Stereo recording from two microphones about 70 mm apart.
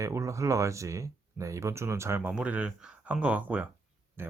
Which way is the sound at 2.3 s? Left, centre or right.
Centre.